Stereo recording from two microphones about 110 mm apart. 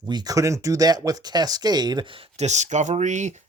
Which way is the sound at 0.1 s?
35° right (ahead or behind).